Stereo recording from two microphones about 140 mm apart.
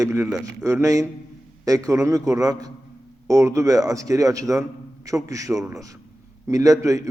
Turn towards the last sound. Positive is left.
turn(degrees=-25)  # may be behind; listen again after turning